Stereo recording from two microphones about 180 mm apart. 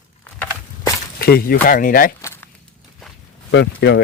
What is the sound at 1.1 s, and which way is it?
Speech, 55° left (ahead or behind).